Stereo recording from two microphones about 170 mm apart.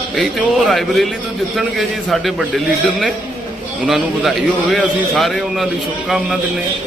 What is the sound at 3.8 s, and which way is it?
A man's voice, centre (ahead or behind).